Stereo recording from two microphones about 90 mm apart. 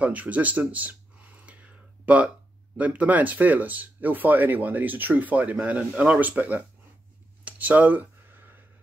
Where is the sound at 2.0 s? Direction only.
15° right (ahead or behind).